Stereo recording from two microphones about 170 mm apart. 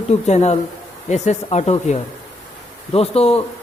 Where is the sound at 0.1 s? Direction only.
40° left (ahead or behind).